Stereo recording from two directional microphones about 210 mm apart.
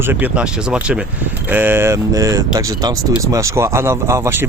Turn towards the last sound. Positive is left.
turn(degrees=-10)  # may be behind; listen again after turning